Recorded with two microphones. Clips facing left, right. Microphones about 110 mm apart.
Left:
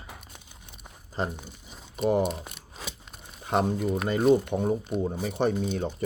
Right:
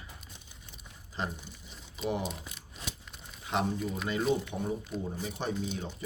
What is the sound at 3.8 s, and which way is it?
Speech, 60° left (ahead or behind).